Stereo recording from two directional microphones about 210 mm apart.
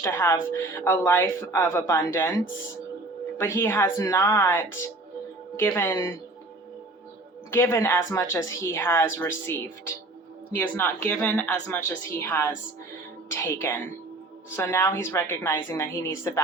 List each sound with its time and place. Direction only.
0.0 s a woman's voice: 10° left (ahead or behind)
7.5 s a woman's voice: 10° left (ahead or behind)